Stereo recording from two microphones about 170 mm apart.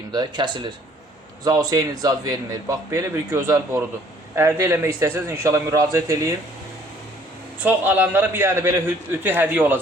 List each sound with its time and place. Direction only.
0.1 s a man's voice: 25° right (ahead or behind)
7.6 s a man's voice: 10° right (ahead or behind)